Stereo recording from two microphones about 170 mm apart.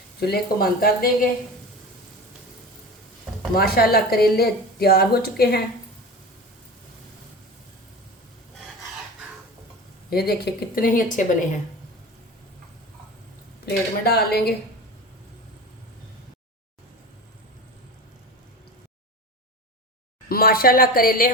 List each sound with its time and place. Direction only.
0.2 s a woman's voice: 65° left (ahead or behind)
3.5 s a woman's voice: 65° left (ahead or behind)
10.1 s a woman's voice: 65° left (ahead or behind)
13.7 s speech: 65° left (ahead or behind)
20.2 s a woman's voice: 60° left (ahead or behind)